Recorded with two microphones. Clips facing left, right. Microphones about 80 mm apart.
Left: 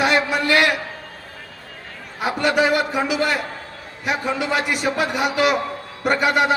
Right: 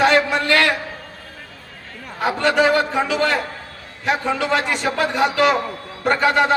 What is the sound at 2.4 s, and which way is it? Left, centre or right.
A man's voice, centre.